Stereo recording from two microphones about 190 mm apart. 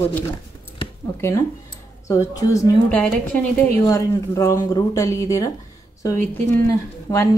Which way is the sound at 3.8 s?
15° left (ahead or behind).